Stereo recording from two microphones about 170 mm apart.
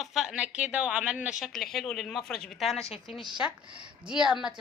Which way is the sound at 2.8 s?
35° left (ahead or behind).